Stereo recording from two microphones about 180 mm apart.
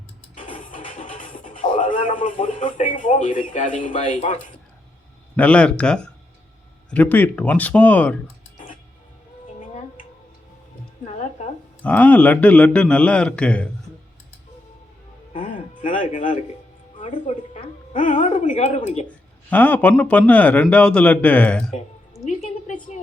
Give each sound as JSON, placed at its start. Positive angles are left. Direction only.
{"t": 0.5, "sound": "music", "side_deg": 45}
{"t": 1.8, "sound": "speech", "side_deg": 45}
{"t": 5.4, "sound": "a man's voice", "side_deg": 5}
{"t": 8.5, "sound": "music", "side_deg": 45}
{"t": 11.8, "sound": "a man's voice", "side_deg": 10}
{"t": 15.4, "sound": "music", "side_deg": 45}
{"t": 17.0, "sound": "a woman's voice", "side_deg": 40}
{"t": 19.5, "sound": "a man's voice", "side_deg": 10}
{"t": 22.3, "sound": "a sound", "side_deg": 40}